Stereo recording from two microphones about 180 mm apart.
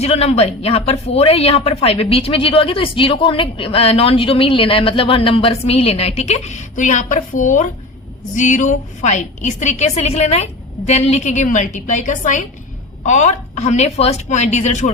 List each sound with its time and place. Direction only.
0.0 s a woman's voice: 35° left (ahead or behind)